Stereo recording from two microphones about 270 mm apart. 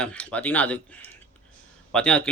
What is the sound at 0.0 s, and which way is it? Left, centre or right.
A man's voice, centre.